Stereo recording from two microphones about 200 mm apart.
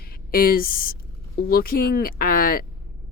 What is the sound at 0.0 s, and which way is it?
Speech, 45° left (ahead or behind).